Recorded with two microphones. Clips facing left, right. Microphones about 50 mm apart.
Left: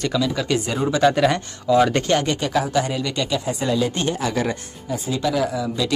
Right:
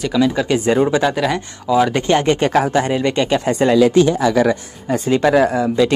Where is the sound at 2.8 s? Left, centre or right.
Right.